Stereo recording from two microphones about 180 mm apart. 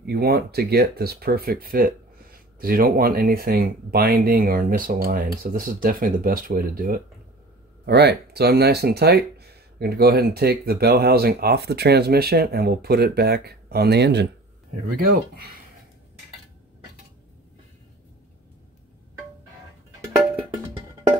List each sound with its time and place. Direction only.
0.0 s speech: 60° right (ahead or behind)
7.8 s speech: 65° right (ahead or behind)